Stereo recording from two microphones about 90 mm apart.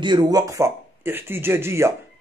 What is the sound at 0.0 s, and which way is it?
Speech, 55° right (ahead or behind).